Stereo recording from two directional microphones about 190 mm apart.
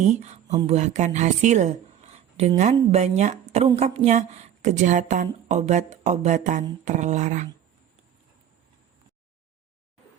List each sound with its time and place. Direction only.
0.0 s speech: 35° right (ahead or behind)